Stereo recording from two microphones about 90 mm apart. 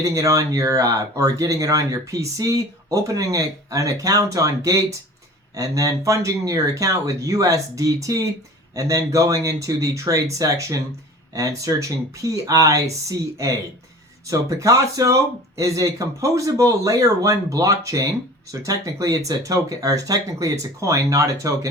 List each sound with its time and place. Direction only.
0.0 s speech: 40° right (ahead or behind)